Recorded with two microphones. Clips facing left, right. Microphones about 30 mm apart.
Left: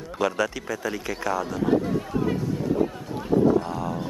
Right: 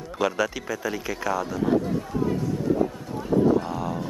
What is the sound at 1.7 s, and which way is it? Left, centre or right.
Speech, centre.